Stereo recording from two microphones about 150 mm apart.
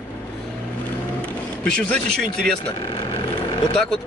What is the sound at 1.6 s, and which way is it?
Speech, 5° left (ahead or behind).